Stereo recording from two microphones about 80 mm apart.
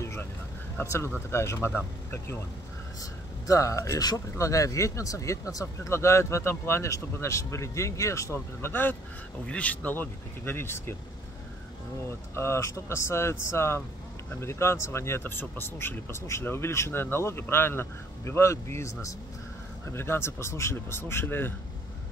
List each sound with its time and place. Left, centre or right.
0.0 s vehicle: left
0.8 s speech: left
1.7 s speech: left
3.0 s speech: left
9.5 s speech: centre
12.4 s speech: left
19.9 s speech: left